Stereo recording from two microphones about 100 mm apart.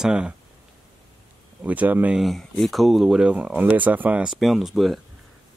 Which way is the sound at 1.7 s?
15° right (ahead or behind).